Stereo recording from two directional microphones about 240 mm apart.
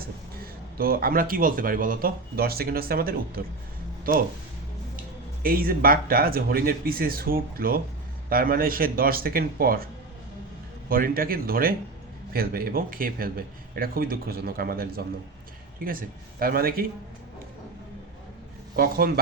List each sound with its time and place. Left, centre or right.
0.8 s a man's voice: right
5.4 s a man's voice: right
18.8 s a man's voice: right